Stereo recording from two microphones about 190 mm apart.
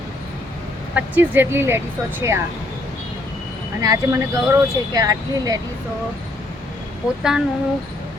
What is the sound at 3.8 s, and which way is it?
Speech, 20° right (ahead or behind).